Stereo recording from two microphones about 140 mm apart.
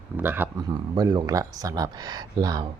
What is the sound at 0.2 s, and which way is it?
Speech, 15° right (ahead or behind).